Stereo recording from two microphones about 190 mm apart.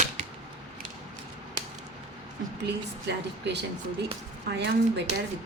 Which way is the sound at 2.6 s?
60° right (ahead or behind).